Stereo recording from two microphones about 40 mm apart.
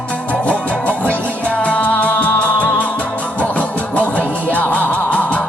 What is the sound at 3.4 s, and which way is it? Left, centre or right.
Music, left.